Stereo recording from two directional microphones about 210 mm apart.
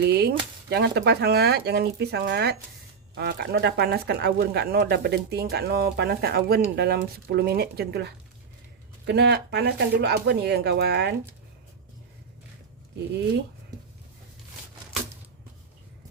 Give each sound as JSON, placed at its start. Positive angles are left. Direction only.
{"t": 0.0, "sound": "speech", "side_deg": -50}